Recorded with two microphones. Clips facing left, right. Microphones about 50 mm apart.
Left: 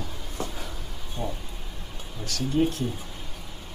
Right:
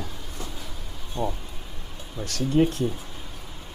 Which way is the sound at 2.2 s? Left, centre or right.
Right.